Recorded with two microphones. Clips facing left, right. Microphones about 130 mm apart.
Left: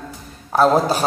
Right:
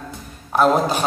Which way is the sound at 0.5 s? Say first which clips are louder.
Left 1 dB; 35° left (ahead or behind).